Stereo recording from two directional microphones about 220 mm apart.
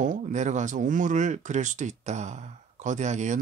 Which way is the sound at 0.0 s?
35° right (ahead or behind).